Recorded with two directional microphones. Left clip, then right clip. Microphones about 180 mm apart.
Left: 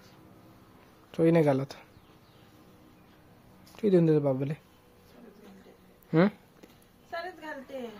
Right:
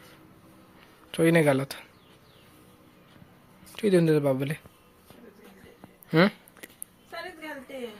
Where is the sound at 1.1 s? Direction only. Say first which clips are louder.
Right 2 dB; 5° left (ahead or behind).